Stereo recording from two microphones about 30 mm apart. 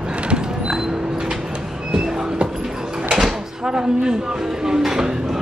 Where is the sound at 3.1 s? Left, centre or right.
Centre.